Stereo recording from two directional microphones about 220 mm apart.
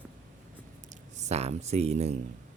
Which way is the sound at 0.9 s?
30° right (ahead or behind).